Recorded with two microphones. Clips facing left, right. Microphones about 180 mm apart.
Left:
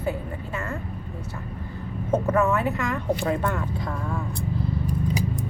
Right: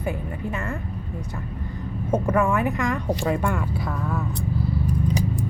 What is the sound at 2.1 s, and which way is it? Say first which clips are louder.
Speech: even; 10° right (ahead or behind).